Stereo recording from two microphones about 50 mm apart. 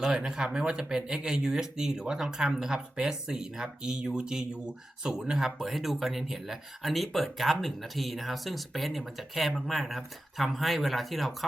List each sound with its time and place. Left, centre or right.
0.0 s speech: centre